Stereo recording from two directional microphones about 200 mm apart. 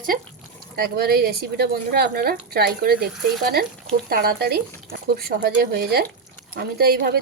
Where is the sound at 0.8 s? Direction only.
50° right (ahead or behind).